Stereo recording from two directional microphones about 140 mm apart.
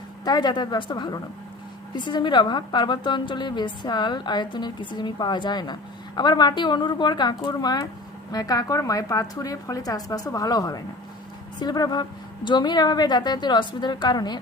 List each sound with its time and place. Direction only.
0.3 s a woman's voice: 30° left (ahead or behind)